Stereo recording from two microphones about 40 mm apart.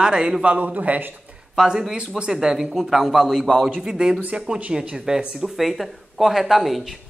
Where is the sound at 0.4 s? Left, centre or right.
Right.